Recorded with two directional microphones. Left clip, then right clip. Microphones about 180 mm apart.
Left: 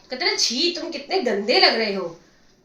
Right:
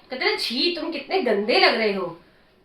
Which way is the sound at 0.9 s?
25° left (ahead or behind).